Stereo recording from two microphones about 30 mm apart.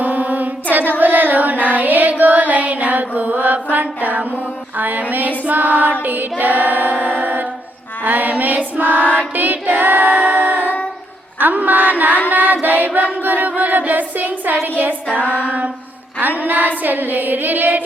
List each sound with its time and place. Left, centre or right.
0.0 s child singing: right
4.8 s a sound: right
5.5 s music: right
6.4 s choir: right
8.0 s music: right
9.1 s choir: right
10.1 s singing: right
10.5 s music: right
11.6 s music: right
12.3 s singing: right
13.2 s a sound: right
15.4 s a sound: right
16.2 s a sound: right